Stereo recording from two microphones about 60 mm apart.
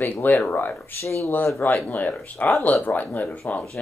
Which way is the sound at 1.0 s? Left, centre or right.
Left.